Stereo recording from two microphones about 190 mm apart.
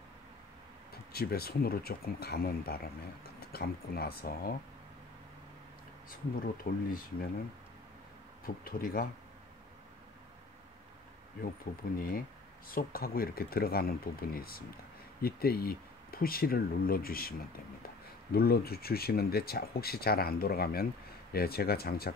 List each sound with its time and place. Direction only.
1.1 s speech: 55° left (ahead or behind)
6.0 s speech: 50° left (ahead or behind)
8.6 s speech: 50° left (ahead or behind)
12.6 s speech: 50° left (ahead or behind)